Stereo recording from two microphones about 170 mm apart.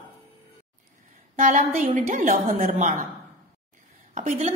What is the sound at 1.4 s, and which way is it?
A woman's voice, 45° right (ahead or behind).